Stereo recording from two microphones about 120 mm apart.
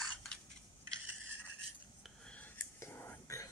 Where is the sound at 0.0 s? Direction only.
5° left (ahead or behind).